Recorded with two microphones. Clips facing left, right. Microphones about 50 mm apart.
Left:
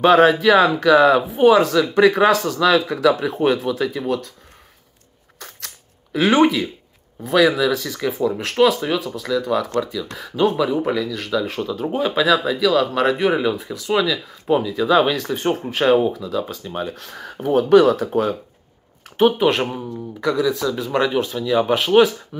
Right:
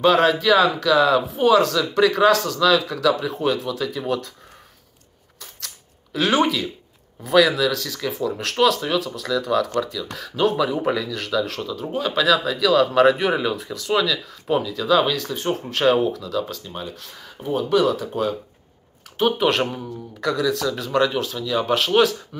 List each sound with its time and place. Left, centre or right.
0.0 s speech: left
4.0 s speech: centre
6.1 s speech: left
7.7 s speech: left
15.7 s speech: centre
16.8 s speech: left
19.3 s speech: centre